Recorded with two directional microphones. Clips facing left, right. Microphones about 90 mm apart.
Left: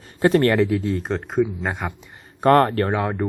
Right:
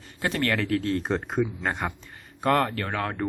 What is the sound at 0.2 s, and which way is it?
Speech, 35° left (ahead or behind).